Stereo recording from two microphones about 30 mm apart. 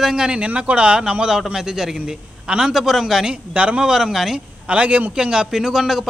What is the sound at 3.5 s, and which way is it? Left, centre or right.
Speech, right.